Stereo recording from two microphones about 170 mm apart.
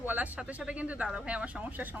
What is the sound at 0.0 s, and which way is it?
A woman's voice, 10° right (ahead or behind).